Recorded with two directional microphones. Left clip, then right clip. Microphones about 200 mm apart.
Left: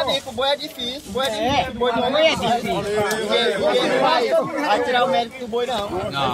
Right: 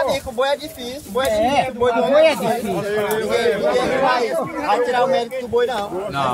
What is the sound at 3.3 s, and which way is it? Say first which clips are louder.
A man's voice: right 1 dB; 10° right (ahead or behind).